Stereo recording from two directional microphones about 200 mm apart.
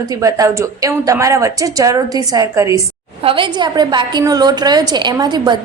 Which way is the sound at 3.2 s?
25° right (ahead or behind).